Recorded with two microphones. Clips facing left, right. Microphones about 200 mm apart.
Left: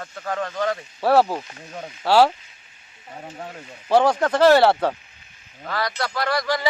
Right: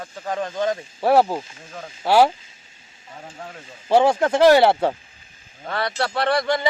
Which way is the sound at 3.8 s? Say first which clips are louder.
Right 1 dB; 25° right (ahead or behind).